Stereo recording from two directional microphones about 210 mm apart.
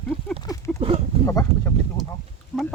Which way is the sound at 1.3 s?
15° left (ahead or behind).